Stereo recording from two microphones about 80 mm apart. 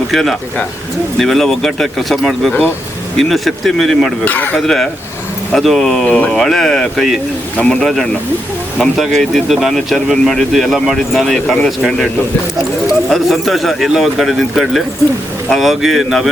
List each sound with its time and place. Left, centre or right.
0.1 s speech: centre
4.3 s speech: left
4.5 s speech: centre
6.1 s speech: centre
6.3 s speech: centre
12.9 s speech: centre